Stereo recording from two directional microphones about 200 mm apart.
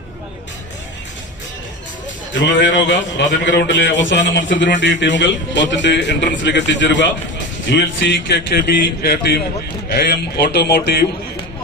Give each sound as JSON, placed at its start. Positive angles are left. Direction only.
{"t": 2.3, "sound": "a man's voice", "side_deg": 65}
{"t": 8.5, "sound": "speech", "side_deg": 50}